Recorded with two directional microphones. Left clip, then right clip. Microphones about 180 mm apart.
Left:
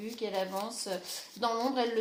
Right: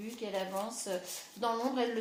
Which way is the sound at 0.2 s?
40° left (ahead or behind).